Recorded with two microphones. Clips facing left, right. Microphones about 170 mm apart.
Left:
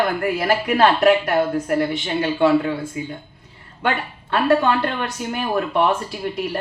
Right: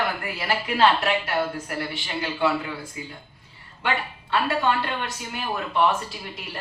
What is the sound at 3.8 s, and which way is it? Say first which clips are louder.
Speech: left 4 dB; 50° left (ahead or behind).